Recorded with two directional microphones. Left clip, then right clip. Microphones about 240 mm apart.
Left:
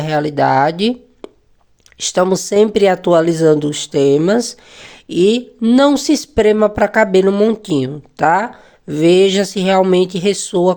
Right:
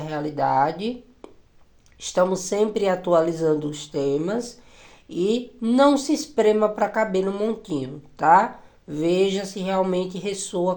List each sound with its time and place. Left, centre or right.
0.0 s speech: left